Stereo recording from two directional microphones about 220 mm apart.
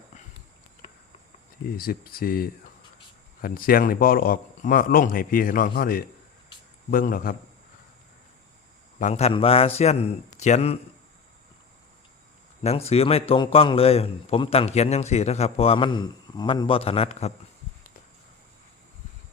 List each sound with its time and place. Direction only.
1.7 s a man's voice: 45° left (ahead or behind)
9.0 s a man's voice: 30° left (ahead or behind)
12.6 s a man's voice: 30° left (ahead or behind)